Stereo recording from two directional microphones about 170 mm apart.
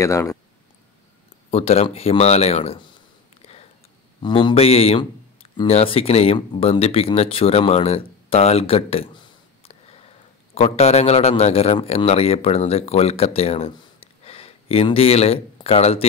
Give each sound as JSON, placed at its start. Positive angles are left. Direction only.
{"t": 0.0, "sound": "speech", "side_deg": 15}
{"t": 1.5, "sound": "speech", "side_deg": 35}
{"t": 3.4, "sound": "a sound", "side_deg": 35}
{"t": 4.2, "sound": "a man's voice", "side_deg": 30}